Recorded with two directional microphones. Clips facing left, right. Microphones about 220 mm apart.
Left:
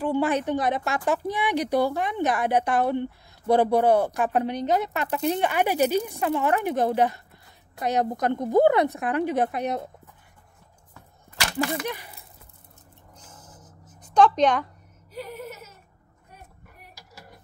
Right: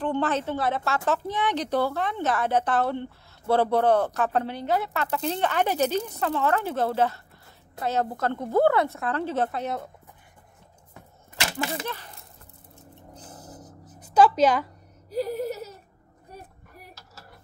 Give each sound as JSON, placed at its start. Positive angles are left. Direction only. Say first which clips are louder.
{"t": 0.0, "sound": "a woman's voice", "louder": "left 2 dB", "side_deg": 10}
{"t": 11.8, "sound": "speech", "louder": "left 3 dB", "side_deg": 15}
{"t": 13.1, "sound": "music", "louder": "right 6 dB", "side_deg": -35}
{"t": 14.1, "sound": "a woman's voice", "louder": "even", "side_deg": -5}
{"t": 15.0, "sound": "a sound", "louder": "right 9 dB", "side_deg": -35}
{"t": 16.9, "sound": "mechanisms", "louder": "left 1 dB", "side_deg": 15}